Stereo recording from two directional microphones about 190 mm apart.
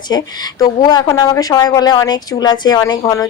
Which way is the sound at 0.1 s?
20° left (ahead or behind).